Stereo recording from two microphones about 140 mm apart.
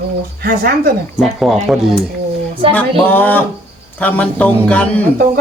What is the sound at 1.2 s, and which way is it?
Speech, centre (ahead or behind).